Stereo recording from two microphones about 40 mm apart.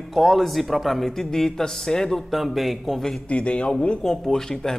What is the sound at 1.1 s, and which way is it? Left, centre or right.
Speech, centre.